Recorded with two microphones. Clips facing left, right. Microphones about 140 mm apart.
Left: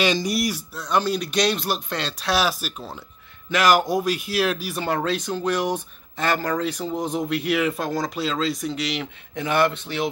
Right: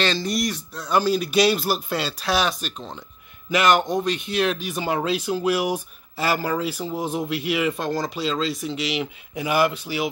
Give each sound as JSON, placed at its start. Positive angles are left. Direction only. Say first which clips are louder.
{"t": 0.0, "sound": "a man's voice", "louder": "left 2 dB", "side_deg": 10}